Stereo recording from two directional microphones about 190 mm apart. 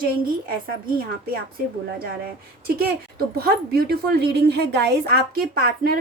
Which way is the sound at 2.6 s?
55° right (ahead or behind).